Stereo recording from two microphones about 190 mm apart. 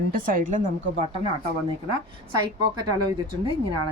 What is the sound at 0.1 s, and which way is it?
Speech, 45° right (ahead or behind).